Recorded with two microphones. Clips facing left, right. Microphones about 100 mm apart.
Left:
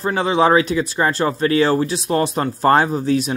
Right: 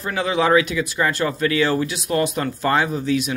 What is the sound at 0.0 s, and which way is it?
Speech, 30° left (ahead or behind).